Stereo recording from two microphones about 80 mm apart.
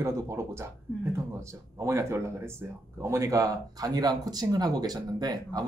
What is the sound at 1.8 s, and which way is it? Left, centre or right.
Speech, right.